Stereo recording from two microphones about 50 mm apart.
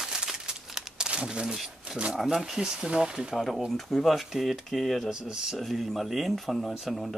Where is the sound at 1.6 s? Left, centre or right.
Centre.